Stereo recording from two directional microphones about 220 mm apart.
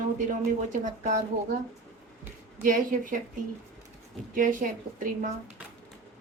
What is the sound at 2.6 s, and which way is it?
Speech, 35° right (ahead or behind).